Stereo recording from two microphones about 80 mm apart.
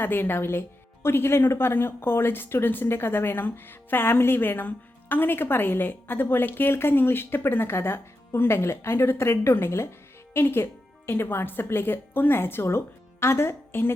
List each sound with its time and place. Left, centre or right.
0.0 s speech: left